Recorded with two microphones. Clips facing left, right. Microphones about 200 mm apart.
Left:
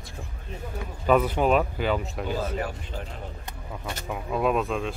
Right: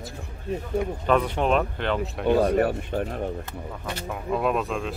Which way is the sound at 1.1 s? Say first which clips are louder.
Left 2 dB; 5° left (ahead or behind).